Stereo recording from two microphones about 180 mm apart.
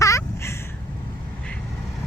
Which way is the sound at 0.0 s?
15° left (ahead or behind).